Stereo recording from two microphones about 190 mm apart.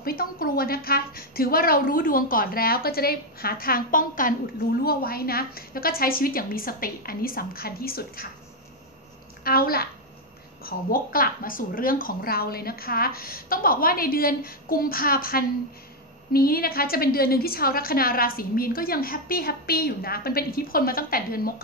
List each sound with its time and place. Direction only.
0.0 s a woman's voice: 50° left (ahead or behind)
9.4 s a child's voice: 50° left (ahead or behind)